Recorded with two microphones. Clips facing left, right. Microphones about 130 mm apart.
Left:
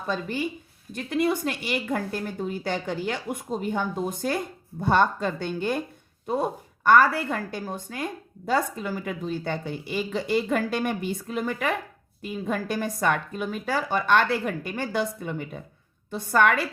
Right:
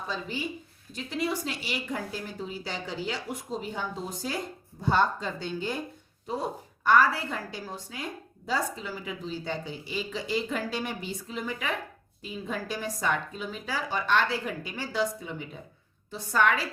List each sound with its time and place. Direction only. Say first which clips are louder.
0.1 s a woman's voice: left 7 dB; 55° left (ahead or behind)